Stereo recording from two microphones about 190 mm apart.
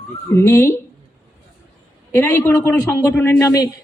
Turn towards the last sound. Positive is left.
turn(degrees=15)  # may be behind; listen again after turning